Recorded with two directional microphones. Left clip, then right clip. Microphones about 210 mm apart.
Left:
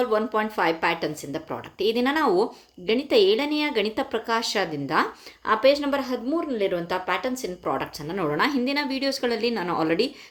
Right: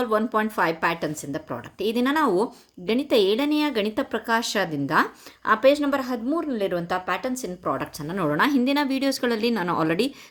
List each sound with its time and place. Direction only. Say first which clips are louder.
0.0 s a woman's voice: even; 30° right (ahead or behind)